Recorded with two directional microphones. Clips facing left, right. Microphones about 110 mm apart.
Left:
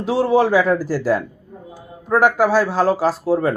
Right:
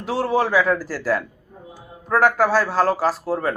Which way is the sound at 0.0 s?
20° left (ahead or behind).